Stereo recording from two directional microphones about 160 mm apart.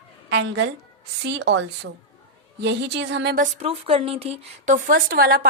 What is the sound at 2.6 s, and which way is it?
Speech, 90° right.